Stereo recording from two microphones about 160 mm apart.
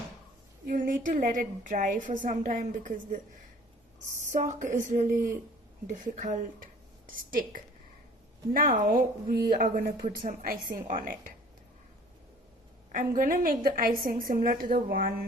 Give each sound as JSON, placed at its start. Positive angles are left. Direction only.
{"t": 0.7, "sound": "a woman's voice", "side_deg": -60}
{"t": 4.3, "sound": "a woman's voice", "side_deg": -50}
{"t": 12.9, "sound": "a woman's voice", "side_deg": -55}